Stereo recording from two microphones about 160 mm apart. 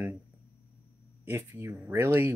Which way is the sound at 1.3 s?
15° right (ahead or behind).